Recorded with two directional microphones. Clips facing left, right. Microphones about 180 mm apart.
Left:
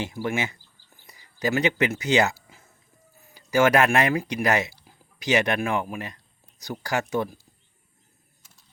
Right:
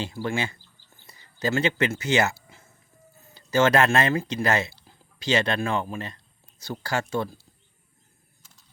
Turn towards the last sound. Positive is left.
turn(degrees=15)  # may be behind; listen again after turning